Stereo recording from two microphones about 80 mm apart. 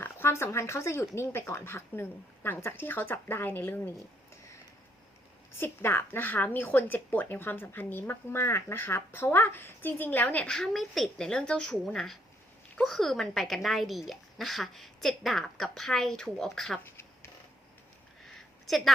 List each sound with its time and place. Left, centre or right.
0.0 s a woman's voice: left
5.5 s a woman's voice: left; by 16.8 s centre
18.3 s a sound: centre